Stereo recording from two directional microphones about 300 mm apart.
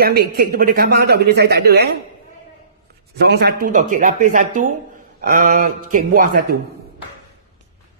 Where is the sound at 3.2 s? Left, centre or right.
Right.